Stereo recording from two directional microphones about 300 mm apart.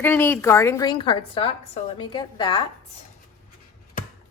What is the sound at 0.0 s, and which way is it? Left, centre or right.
A woman's voice, centre.